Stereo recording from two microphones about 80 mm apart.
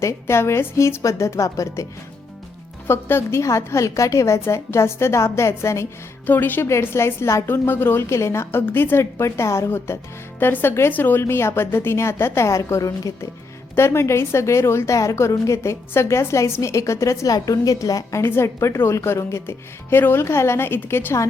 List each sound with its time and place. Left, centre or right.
0.0 s a woman's voice: left
2.8 s a woman's voice: left
6.2 s a woman's voice: left
6.7 s a woman's voice: left
13.7 s a woman's voice: left
18.2 s a woman's voice: left